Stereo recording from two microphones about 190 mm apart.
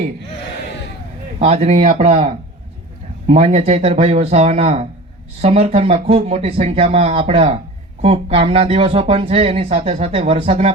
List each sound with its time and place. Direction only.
1.4 s speech: 35° right (ahead or behind)